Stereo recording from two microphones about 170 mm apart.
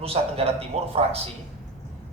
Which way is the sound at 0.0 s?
35° right (ahead or behind).